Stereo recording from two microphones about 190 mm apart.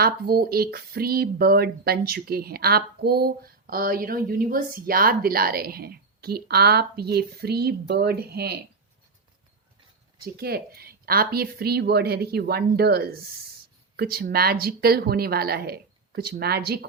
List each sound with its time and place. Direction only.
0.0 s speech: 50° right (ahead or behind)
10.2 s speech: 55° right (ahead or behind)